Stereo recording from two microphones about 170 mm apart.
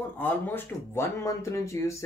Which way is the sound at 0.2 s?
10° left (ahead or behind).